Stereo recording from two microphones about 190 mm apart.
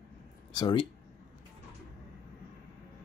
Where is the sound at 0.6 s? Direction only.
20° left (ahead or behind).